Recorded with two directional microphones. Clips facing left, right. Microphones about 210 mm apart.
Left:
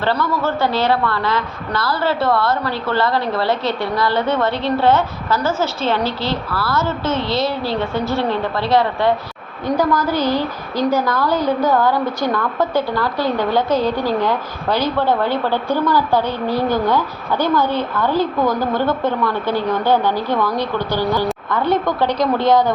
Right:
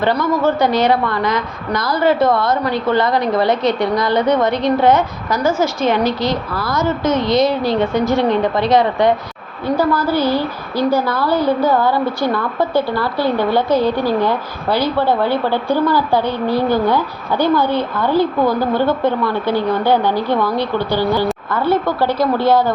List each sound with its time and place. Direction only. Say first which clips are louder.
0.0 s a woman's voice: right 4 dB; 15° right (ahead or behind)